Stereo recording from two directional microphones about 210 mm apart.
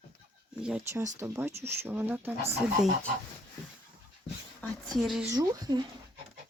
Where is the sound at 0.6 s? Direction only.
5° right (ahead or behind).